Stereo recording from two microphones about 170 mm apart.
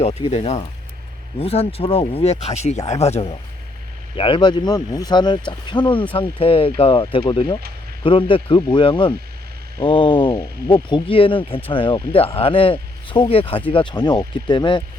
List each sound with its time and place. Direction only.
0.0 s speech: 40° left (ahead or behind)
10.3 s speech: 20° left (ahead or behind)